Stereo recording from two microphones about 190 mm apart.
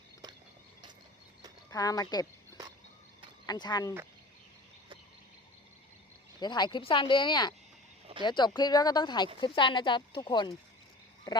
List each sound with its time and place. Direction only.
1.7 s speech: 20° left (ahead or behind)
3.4 s speech: 20° left (ahead or behind)
6.4 s speech: 20° left (ahead or behind)